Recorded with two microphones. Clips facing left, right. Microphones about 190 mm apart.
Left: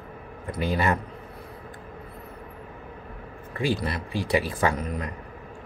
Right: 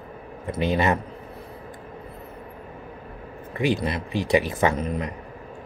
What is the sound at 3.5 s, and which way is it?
Speech, 20° right (ahead or behind).